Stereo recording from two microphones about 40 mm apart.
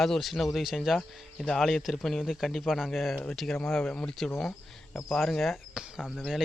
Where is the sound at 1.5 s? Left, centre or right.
Centre.